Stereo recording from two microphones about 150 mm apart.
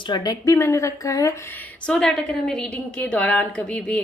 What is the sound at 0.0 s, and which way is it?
Speech, 25° left (ahead or behind).